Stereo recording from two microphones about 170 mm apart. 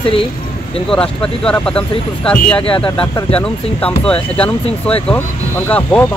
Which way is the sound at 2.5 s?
30° left (ahead or behind).